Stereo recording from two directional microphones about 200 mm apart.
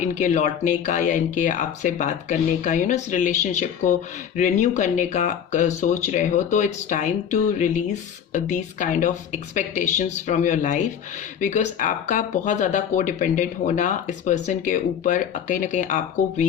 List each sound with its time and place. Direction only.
0.0 s speech: 35° left (ahead or behind)